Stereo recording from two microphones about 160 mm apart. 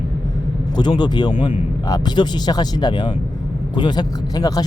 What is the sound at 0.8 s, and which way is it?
Speech, 25° left (ahead or behind).